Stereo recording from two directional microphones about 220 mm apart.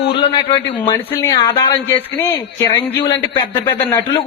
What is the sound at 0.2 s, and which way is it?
Speech, 20° left (ahead or behind).